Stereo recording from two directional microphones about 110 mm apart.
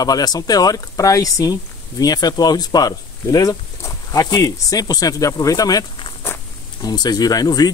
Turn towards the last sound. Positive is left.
turn(degrees=35)  # may be behind; listen again after turning